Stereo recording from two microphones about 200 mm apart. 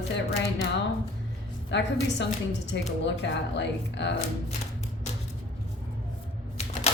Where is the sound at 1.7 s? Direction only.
60° left (ahead or behind).